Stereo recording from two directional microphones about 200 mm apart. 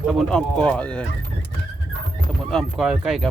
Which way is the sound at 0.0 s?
Centre (ahead or behind).